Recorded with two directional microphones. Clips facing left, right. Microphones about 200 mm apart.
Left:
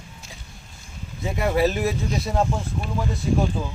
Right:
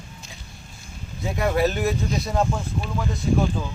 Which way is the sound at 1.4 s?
5° left (ahead or behind).